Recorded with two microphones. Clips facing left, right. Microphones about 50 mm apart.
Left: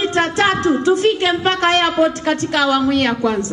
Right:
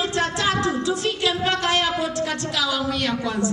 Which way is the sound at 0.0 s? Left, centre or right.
Left.